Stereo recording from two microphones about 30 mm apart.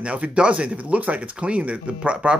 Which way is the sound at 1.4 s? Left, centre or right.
Right.